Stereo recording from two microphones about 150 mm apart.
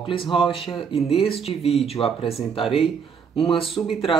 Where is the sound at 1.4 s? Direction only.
40° left (ahead or behind).